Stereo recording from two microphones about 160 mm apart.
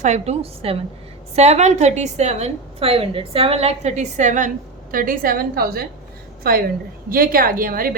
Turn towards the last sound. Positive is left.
turn(degrees=-65)  # may be behind; listen again after turning